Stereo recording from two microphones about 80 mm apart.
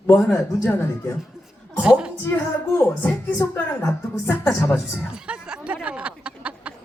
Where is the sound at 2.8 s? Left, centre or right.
Left.